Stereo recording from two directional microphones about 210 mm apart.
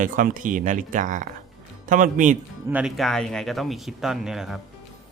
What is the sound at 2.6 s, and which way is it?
Speech, 5° right (ahead or behind).